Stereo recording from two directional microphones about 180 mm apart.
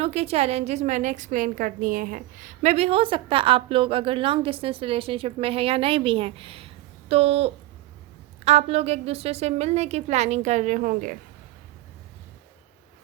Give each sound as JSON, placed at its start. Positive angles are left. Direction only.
{"t": 0.0, "sound": "a woman's voice", "side_deg": -35}